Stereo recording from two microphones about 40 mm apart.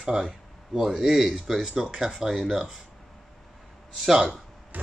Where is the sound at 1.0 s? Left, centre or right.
Centre.